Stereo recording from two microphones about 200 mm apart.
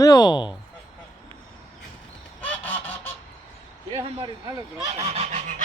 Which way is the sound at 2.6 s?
10° left (ahead or behind).